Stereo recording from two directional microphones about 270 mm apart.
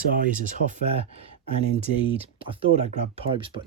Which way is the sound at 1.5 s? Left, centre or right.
Right.